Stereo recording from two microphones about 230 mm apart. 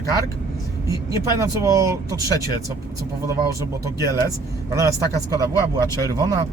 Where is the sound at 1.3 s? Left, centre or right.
Centre.